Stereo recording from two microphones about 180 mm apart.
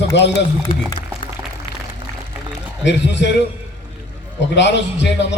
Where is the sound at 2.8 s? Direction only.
75° left (ahead or behind).